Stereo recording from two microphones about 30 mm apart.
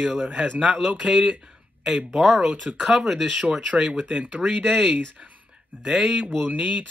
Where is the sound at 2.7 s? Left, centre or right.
Right.